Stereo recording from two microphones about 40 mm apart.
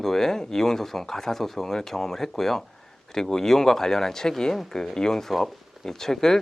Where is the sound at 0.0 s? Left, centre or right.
Centre.